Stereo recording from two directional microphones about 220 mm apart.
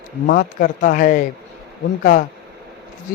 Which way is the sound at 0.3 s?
40° left (ahead or behind).